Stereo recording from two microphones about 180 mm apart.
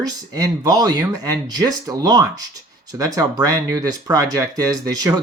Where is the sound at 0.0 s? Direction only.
20° right (ahead or behind).